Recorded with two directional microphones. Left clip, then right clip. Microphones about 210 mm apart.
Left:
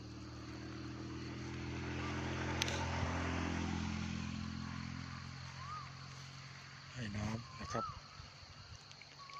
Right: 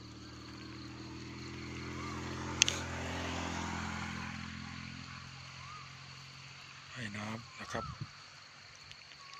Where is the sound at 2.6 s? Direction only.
50° right (ahead or behind); by 4.8 s 25° right (ahead or behind).